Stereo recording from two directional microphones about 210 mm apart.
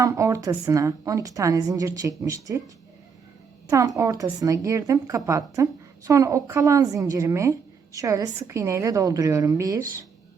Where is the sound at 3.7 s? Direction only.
15° right (ahead or behind).